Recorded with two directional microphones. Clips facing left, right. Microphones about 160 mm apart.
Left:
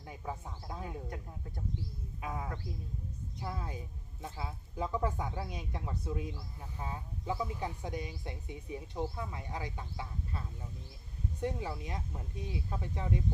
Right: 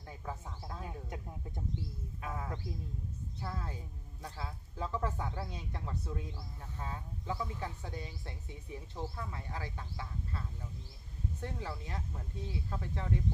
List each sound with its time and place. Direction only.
0.0 s speech: 15° left (ahead or behind)
2.2 s speech: 15° left (ahead or behind)